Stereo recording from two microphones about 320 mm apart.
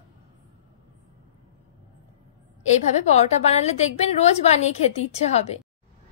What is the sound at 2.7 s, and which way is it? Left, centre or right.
A woman's voice, left.